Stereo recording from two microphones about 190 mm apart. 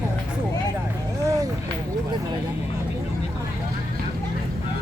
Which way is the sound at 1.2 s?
15° right (ahead or behind).